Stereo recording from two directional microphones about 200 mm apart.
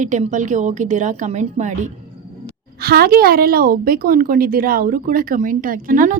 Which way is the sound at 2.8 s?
50° right (ahead or behind).